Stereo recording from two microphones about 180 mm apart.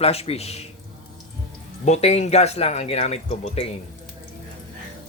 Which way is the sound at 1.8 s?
35° left (ahead or behind).